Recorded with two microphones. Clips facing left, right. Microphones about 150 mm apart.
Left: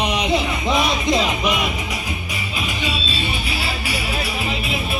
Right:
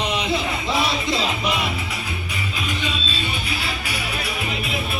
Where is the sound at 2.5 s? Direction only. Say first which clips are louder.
Left 2 dB; 10° left (ahead or behind).